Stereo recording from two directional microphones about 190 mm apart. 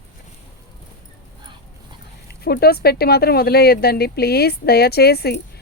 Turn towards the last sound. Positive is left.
turn(degrees=55)  # may be behind; listen again after turning